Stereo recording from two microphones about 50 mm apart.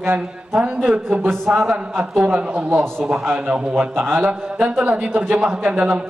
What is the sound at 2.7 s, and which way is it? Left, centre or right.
Speech, right.